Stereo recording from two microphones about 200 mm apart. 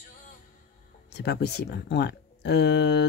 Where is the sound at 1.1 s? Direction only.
55° left (ahead or behind).